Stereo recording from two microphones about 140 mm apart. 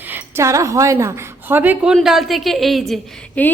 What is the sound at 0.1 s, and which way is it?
A woman's voice, 20° right (ahead or behind).